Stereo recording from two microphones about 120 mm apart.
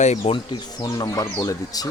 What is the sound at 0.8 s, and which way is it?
Speech, 30° left (ahead or behind).